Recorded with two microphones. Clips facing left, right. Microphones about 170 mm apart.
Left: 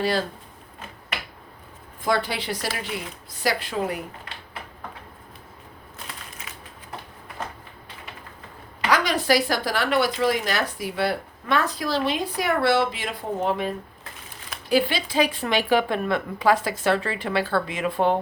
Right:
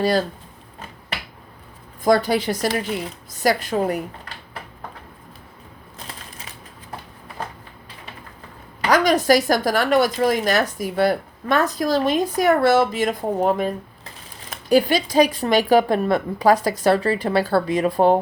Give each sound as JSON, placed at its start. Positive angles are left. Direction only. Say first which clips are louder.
{"t": 2.0, "sound": "a woman's voice", "louder": "right 7 dB", "side_deg": -40}
{"t": 8.9, "sound": "a woman's voice", "louder": "right 5 dB", "side_deg": -45}
{"t": 14.7, "sound": "a woman's voice", "louder": "right 5 dB", "side_deg": -40}